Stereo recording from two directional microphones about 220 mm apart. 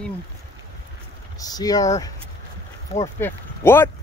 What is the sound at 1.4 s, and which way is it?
Speech, 15° left (ahead or behind).